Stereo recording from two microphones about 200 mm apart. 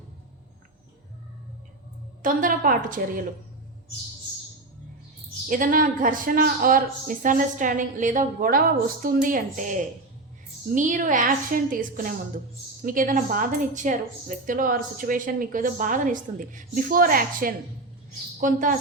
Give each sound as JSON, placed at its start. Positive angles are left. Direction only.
{"t": 2.2, "sound": "a woman's voice", "side_deg": -45}
{"t": 5.5, "sound": "a woman's voice", "side_deg": -45}